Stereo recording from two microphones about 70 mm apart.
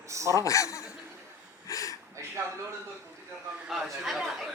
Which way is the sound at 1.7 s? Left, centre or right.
Left.